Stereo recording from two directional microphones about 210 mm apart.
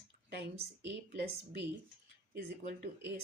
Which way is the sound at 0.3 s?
55° right (ahead or behind).